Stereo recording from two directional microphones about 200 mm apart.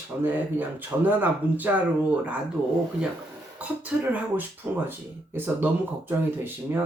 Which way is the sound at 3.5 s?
10° right (ahead or behind).